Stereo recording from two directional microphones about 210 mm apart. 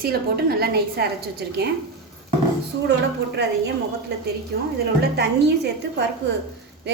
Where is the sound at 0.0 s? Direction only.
50° right (ahead or behind).